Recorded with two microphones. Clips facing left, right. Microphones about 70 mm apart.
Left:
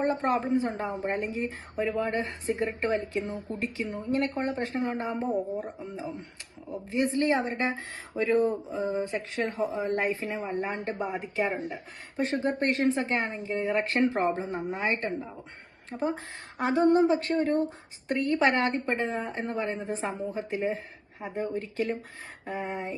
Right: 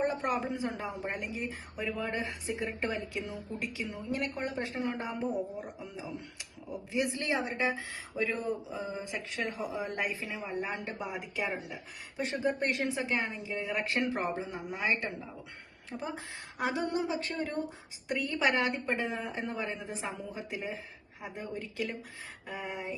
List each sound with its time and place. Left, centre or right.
0.0 s speech: left